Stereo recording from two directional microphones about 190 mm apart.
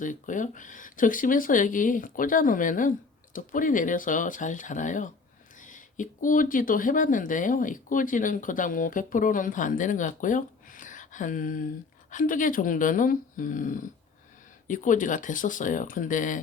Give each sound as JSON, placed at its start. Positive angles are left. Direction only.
{"t": 0.0, "sound": "speech", "side_deg": 45}